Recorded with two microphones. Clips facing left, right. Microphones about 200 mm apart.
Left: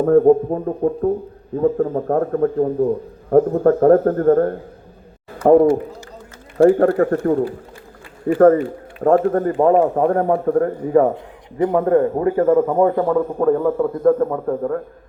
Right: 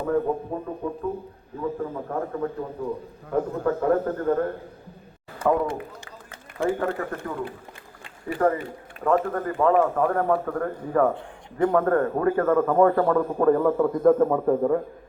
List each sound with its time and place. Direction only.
0.0 s a man's voice: 50° left (ahead or behind)
6.7 s a man's voice: 60° left (ahead or behind); by 14.8 s 5° right (ahead or behind)